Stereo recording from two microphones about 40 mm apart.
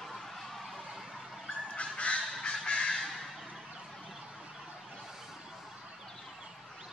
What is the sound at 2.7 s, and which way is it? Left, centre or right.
Crow, centre.